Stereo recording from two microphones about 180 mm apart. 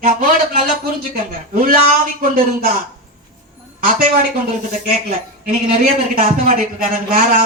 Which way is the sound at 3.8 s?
50° right (ahead or behind).